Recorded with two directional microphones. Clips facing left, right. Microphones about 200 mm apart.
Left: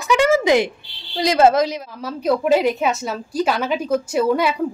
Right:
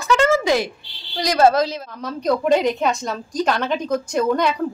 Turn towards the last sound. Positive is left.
turn(degrees=5)  # may be behind; listen again after turning